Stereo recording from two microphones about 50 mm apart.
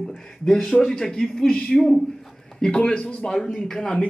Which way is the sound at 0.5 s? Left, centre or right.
Centre.